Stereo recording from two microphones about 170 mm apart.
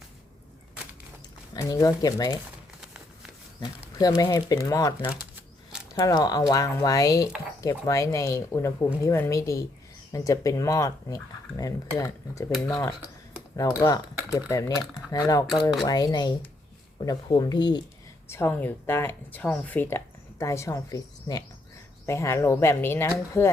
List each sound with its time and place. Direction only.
1.5 s speech: 20° left (ahead or behind)
3.6 s speech: 20° left (ahead or behind)
13.6 s speech: 20° left (ahead or behind)
18.3 s speech: 15° left (ahead or behind)